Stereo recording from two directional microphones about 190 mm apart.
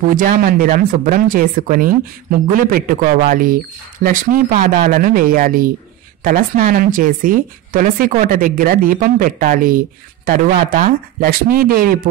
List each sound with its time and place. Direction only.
0.1 s speech: 45° right (ahead or behind)